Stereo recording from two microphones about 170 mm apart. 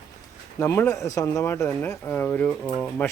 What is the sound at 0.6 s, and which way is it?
Speech, 15° left (ahead or behind).